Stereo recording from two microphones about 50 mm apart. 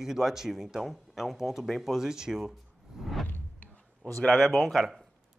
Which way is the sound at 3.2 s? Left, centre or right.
Left.